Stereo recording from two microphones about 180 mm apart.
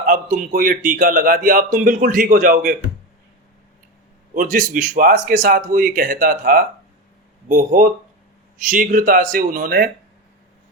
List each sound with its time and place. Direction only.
0.0 s a man's voice: 50° right (ahead or behind)
4.4 s a man's voice: 50° right (ahead or behind)